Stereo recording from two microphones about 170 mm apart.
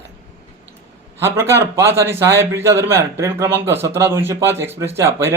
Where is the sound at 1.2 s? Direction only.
15° right (ahead or behind).